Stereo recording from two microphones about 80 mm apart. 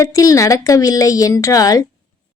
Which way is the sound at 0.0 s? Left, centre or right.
Left.